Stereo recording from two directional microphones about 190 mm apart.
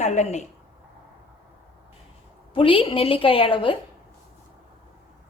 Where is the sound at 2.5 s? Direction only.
30° left (ahead or behind).